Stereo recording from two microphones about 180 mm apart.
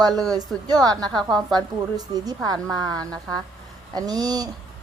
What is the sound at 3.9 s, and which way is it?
Speech, 20° right (ahead or behind).